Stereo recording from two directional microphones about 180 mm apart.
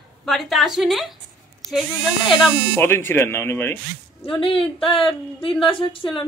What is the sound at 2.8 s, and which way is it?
Speech, 10° left (ahead or behind).